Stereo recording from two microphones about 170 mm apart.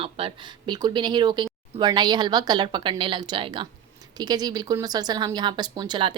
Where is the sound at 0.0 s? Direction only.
35° right (ahead or behind).